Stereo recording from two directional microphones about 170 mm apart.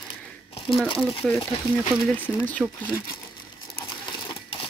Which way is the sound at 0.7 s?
5° left (ahead or behind).